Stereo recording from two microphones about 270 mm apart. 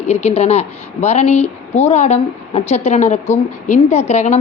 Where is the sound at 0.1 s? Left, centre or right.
Left.